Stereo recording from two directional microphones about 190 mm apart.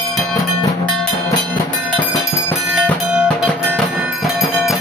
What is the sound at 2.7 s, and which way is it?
Music, 5° left (ahead or behind).